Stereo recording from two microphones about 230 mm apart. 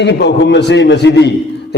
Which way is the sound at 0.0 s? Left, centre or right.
Left.